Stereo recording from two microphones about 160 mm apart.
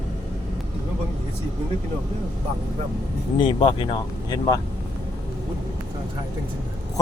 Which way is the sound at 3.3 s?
30° left (ahead or behind).